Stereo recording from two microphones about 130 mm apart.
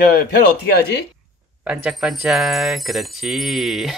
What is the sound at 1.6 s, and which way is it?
Jingle bell, 5° right (ahead or behind).